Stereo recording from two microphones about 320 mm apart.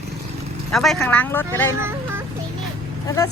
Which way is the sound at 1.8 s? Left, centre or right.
Centre.